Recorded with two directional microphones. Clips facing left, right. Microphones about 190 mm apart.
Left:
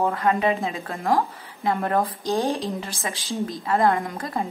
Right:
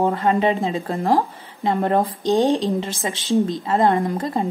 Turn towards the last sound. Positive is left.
turn(degrees=-25)  # may be behind; listen again after turning